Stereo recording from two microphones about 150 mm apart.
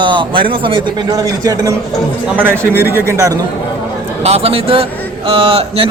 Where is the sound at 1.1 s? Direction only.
25° right (ahead or behind).